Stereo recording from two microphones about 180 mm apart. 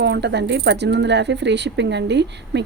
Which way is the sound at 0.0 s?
70° right (ahead or behind).